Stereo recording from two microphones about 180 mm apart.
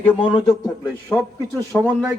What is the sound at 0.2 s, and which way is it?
Speech, 30° left (ahead or behind).